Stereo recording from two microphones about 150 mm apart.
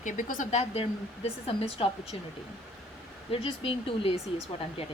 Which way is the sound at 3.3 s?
35° left (ahead or behind).